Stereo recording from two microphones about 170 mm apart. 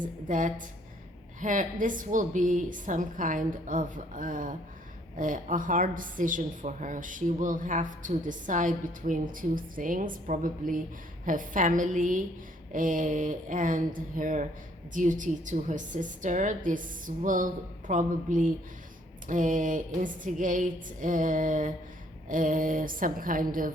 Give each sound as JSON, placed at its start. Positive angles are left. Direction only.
{"t": 0.0, "sound": "a woman's voice", "side_deg": -50}